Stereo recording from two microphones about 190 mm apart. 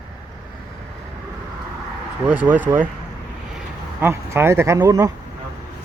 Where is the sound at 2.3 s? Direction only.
10° right (ahead or behind).